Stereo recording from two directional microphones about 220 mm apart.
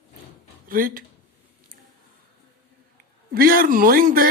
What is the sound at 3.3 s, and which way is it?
Speech, 40° right (ahead or behind).